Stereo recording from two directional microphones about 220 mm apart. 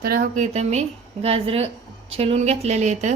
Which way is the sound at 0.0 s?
40° right (ahead or behind).